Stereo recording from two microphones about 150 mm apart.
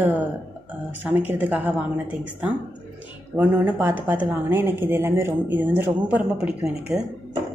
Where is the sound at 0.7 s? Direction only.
10° right (ahead or behind).